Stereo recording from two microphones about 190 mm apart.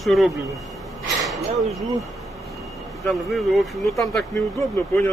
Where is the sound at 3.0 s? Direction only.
Centre (ahead or behind).